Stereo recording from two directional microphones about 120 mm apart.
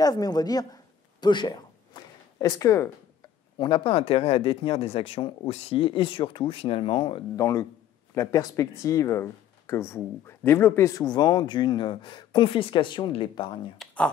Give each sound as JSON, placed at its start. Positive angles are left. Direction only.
{"t": 0.0, "sound": "speech", "side_deg": 30}
{"t": 1.2, "sound": "a sound", "side_deg": 40}
{"t": 3.5, "sound": "speech", "side_deg": 40}
{"t": 7.3, "sound": "a man's voice", "side_deg": 25}
{"t": 13.7, "sound": "speech", "side_deg": 10}